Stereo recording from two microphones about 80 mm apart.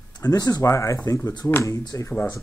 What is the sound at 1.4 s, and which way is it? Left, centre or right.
Speech, left.